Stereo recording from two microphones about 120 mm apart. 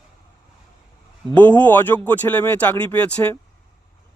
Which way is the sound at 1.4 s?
15° left (ahead or behind).